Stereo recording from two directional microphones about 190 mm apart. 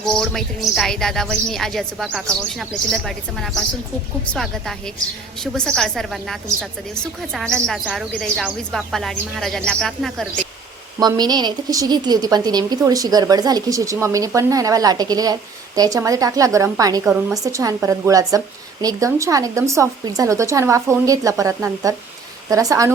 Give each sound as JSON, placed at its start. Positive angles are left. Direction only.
{"t": 0.0, "sound": "a woman's voice", "side_deg": 0}
{"t": 11.0, "sound": "a woman's voice", "side_deg": -20}